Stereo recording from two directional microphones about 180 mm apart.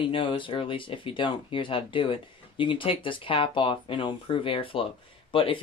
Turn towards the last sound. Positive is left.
turn(degrees=30)  # may be behind; listen again after turning